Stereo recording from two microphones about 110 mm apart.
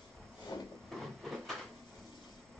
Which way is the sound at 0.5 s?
40° left (ahead or behind).